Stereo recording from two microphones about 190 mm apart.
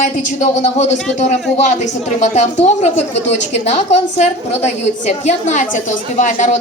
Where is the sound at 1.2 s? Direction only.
40° left (ahead or behind).